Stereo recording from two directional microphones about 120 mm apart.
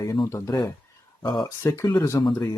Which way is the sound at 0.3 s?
25° left (ahead or behind).